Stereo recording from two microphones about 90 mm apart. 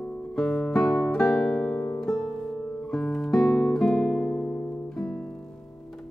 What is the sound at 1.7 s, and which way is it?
Music, 15° left (ahead or behind).